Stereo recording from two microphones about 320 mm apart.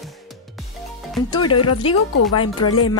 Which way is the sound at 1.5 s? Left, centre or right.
Left.